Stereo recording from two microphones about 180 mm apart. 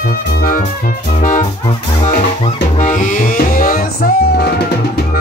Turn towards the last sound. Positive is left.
turn(degrees=50)  # may be behind; listen again after turning